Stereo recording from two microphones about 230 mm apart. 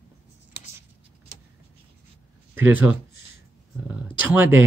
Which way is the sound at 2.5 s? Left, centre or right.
Centre.